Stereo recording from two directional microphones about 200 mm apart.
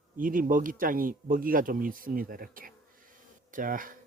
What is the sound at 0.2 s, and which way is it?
Speech, 45° right (ahead or behind).